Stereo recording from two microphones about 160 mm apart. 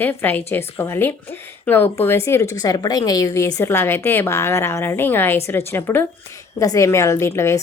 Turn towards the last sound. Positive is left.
turn(degrees=15)  # may be behind; listen again after turning